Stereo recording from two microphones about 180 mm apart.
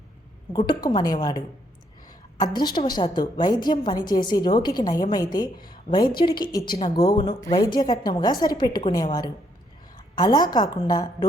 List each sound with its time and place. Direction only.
0.5 s a woman's voice: 25° left (ahead or behind)
10.2 s a woman's voice: 20° left (ahead or behind)